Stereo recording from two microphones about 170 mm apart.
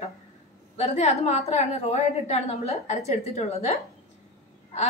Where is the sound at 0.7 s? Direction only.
40° left (ahead or behind).